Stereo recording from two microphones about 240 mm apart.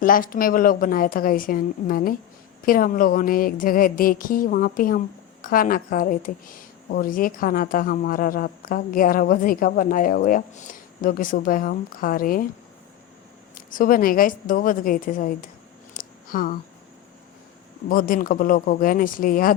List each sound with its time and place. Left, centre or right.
0.0 s a woman's voice: left
13.7 s a woman's voice: left
16.0 s a sound: left
17.8 s a woman's voice: left